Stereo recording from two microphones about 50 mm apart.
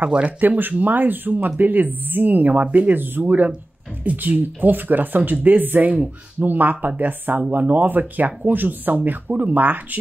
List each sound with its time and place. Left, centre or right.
0.4 s speech: right
4.0 s speech: right